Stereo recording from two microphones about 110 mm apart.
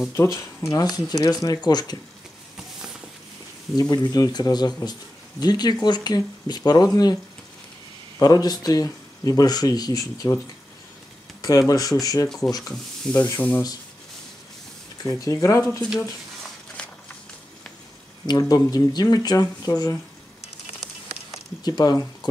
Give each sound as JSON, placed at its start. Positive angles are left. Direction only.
{"t": 0.1, "sound": "speech", "side_deg": 25}
{"t": 3.9, "sound": "speech", "side_deg": 40}
{"t": 8.2, "sound": "speech", "side_deg": 35}
{"t": 13.0, "sound": "speech", "side_deg": 10}
{"t": 15.0, "sound": "speech", "side_deg": 30}
{"t": 15.8, "sound": "speech", "side_deg": 0}
{"t": 18.2, "sound": "speech", "side_deg": 35}
{"t": 21.3, "sound": "a sound", "side_deg": 40}